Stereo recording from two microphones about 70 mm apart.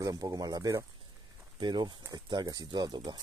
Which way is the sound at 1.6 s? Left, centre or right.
Right.